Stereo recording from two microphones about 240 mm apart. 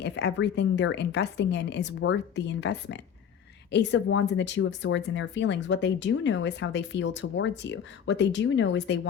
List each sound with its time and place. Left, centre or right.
0.0 s speech: left